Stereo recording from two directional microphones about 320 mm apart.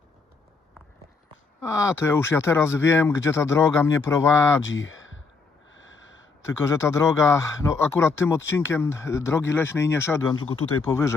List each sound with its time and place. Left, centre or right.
1.6 s speech: centre
4.6 s a sound: left
6.7 s speech: centre